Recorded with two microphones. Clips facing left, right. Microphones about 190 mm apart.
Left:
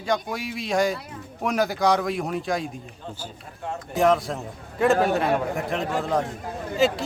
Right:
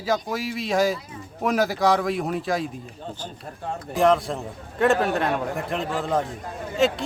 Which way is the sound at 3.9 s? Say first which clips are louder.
Right 1 dB; centre (ahead or behind).